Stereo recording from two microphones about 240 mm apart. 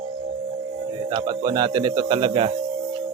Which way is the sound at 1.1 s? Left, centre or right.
Centre.